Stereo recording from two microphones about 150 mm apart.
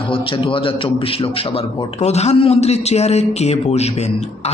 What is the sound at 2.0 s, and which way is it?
A man's voice, 45° left (ahead or behind).